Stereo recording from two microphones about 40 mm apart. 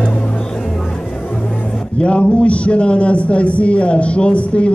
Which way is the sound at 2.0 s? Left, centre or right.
Left.